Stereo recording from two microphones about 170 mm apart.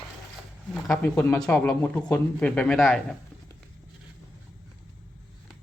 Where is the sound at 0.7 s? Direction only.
Centre (ahead or behind).